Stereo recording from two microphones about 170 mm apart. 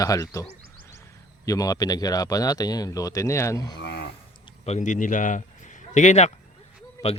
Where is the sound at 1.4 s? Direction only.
20° left (ahead or behind).